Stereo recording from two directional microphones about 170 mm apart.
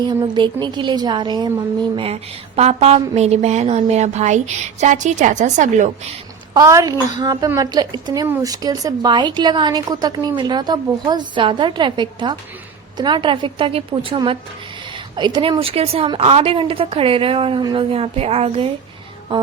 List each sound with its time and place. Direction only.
0.0 s a woman's voice: 25° right (ahead or behind); by 6.1 s 45° right (ahead or behind)
6.5 s a woman's voice: 20° right (ahead or behind)